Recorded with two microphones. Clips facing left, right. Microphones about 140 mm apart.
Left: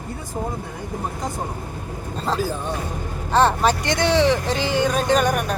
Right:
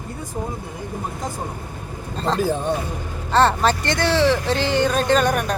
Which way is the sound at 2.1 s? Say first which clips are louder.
Right 3 dB; 5° left (ahead or behind).